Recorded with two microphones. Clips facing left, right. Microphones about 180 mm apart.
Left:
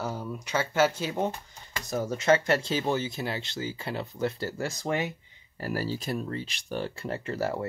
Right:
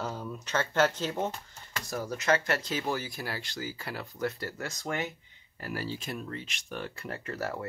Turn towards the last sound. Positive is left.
turn(degrees=25)  # may be behind; listen again after turning